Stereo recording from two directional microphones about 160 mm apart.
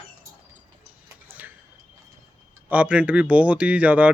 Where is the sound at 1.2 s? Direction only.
10° right (ahead or behind).